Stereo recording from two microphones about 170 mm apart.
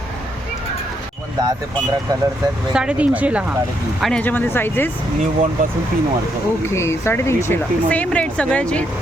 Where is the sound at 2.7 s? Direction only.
5° right (ahead or behind).